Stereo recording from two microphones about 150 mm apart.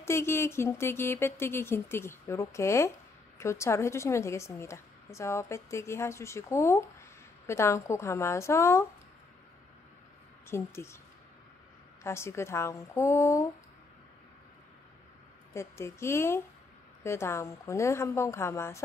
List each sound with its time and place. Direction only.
0.0 s a woman's voice: 15° left (ahead or behind)
10.5 s speech: 15° left (ahead or behind)
12.0 s a woman's voice: 15° left (ahead or behind)
15.5 s speech: 20° left (ahead or behind)